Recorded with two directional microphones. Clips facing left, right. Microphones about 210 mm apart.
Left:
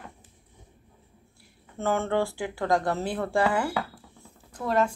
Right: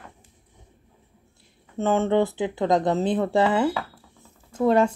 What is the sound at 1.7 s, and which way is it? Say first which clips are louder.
Speech: right 5 dB; 20° right (ahead or behind).